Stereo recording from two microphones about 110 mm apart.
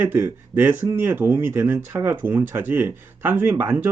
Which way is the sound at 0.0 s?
20° right (ahead or behind).